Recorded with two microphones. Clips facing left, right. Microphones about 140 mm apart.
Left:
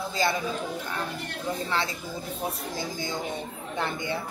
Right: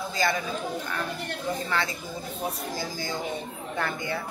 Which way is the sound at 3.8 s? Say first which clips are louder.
Even; 20° left (ahead or behind).